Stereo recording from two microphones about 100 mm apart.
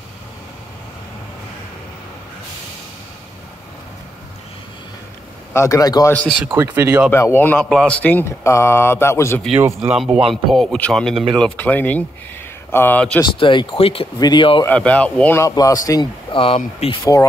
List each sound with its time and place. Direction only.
5.5 s a man's voice: 30° left (ahead or behind)
6.5 s speech: 25° right (ahead or behind)
7.1 s mantra: 25° left (ahead or behind)
7.7 s speech: 10° left (ahead or behind)
8.5 s mantra: 30° left (ahead or behind)
9.8 s speech: 5° right (ahead or behind)
10.3 s speech: centre (ahead or behind)
12.7 s mantra: 20° left (ahead or behind)
13.2 s speech: 50° left (ahead or behind); by 14.0 s 70° left (ahead or behind)
14.2 s speech: 50° left (ahead or behind)
14.7 s speech: 15° left (ahead or behind)
15.5 s a man's voice: 40° left (ahead or behind)
16.3 s speech: 60° left (ahead or behind)
17.0 s a man's voice: 35° left (ahead or behind)